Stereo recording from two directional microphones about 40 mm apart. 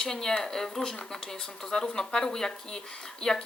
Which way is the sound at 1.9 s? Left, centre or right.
Centre.